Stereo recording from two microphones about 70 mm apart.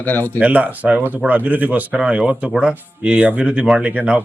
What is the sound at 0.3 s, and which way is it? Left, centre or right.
Speech, right.